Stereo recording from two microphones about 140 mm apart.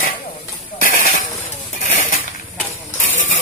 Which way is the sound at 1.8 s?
60° left (ahead or behind).